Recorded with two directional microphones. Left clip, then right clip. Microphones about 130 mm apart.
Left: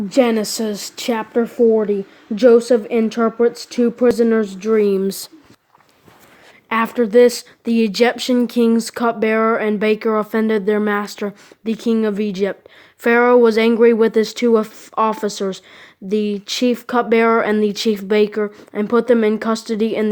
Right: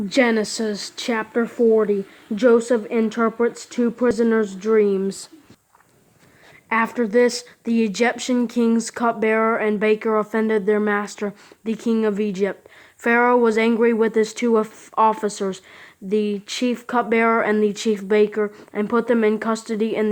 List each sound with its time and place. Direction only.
0.1 s speech: 40° left (ahead or behind)
6.7 s speech: 40° left (ahead or behind)